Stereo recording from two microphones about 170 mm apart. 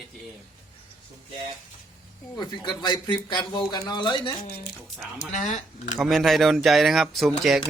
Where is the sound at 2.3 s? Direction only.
25° left (ahead or behind).